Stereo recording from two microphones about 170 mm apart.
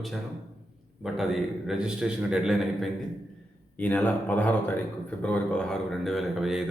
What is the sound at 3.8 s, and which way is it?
Speech, 10° left (ahead or behind).